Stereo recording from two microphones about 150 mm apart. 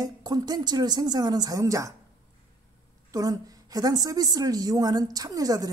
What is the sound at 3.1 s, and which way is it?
A woman's voice, 25° right (ahead or behind).